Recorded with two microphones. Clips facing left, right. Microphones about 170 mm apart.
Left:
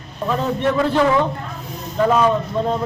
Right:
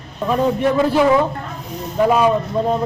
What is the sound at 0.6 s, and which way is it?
A man's voice, 10° right (ahead or behind).